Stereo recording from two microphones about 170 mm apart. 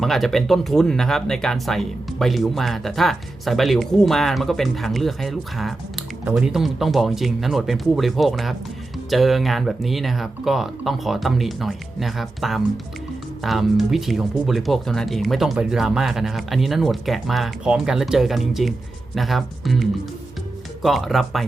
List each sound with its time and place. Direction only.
0.0 s speech: centre (ahead or behind)